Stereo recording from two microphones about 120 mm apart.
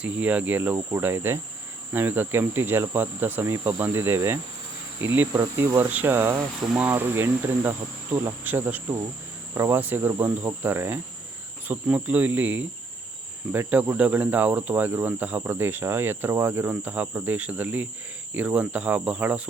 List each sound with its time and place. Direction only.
0.0 s cricket: 10° right (ahead or behind)